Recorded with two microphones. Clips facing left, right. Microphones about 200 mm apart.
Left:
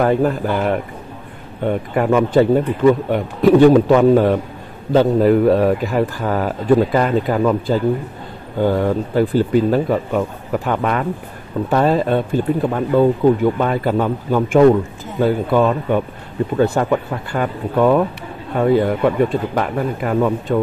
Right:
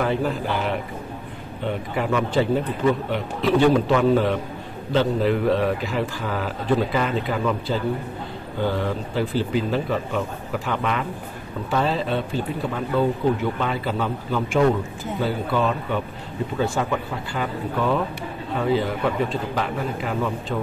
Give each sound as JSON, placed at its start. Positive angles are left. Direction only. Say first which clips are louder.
{"t": 0.0, "sound": "speech", "louder": "left 7 dB", "side_deg": 50}